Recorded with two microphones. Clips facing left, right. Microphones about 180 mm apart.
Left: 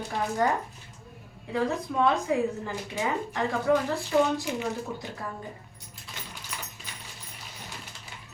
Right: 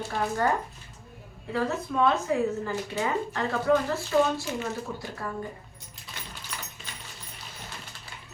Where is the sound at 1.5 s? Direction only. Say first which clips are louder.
Even; 15° left (ahead or behind).